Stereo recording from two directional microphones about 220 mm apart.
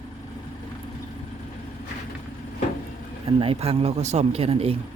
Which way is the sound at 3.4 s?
25° right (ahead or behind).